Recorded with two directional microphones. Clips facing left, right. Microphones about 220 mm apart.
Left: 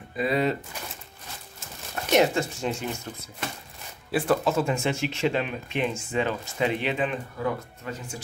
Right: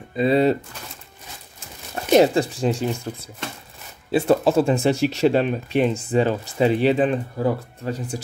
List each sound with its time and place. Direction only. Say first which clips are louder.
0.1 s speech: right 7 dB; 30° right (ahead or behind)
2.1 s speech: right 6 dB; 35° right (ahead or behind)
4.1 s speech: right 6 dB; 30° right (ahead or behind)